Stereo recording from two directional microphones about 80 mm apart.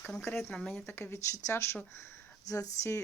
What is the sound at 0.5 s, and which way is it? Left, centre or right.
Speech, centre.